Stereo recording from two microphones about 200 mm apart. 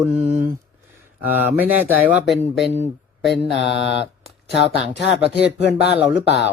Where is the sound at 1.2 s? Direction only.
10° right (ahead or behind).